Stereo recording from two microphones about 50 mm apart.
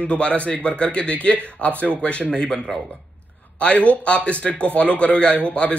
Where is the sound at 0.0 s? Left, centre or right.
Left.